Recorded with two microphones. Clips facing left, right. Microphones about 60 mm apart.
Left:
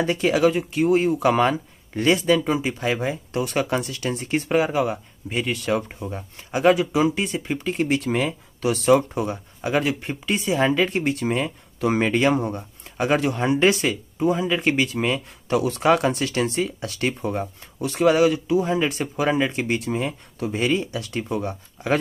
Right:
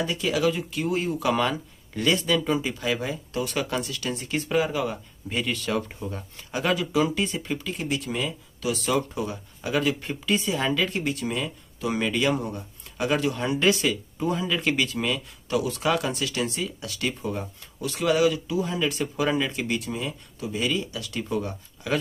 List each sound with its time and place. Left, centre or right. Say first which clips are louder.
0.0 s speech: left 5 dB; left
7.8 s speech: left 9 dB; left
14.1 s speech: left 5 dB; centre